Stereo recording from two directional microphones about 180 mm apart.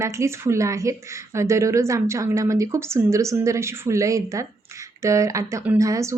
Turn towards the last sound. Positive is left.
turn(degrees=-15)  # may be behind; listen again after turning